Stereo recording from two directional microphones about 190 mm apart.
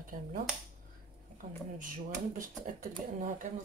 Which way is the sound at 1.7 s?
45° right (ahead or behind).